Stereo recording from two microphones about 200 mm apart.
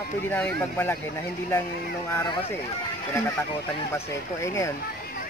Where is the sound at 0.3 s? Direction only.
10° left (ahead or behind).